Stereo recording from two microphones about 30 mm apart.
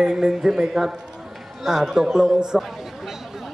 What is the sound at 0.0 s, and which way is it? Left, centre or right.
Speech, right.